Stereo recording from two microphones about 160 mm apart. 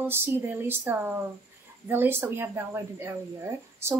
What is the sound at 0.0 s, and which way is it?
A woman's voice, 15° right (ahead or behind).